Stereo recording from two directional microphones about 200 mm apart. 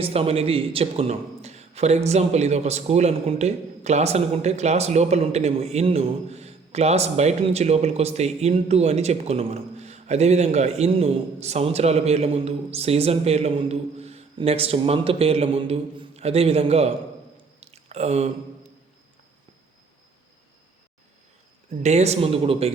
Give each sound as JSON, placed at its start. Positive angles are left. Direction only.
{"t": 0.0, "sound": "a man's voice", "side_deg": -30}
{"t": 17.6, "sound": "a sound", "side_deg": -30}
{"t": 21.8, "sound": "a man's voice", "side_deg": -35}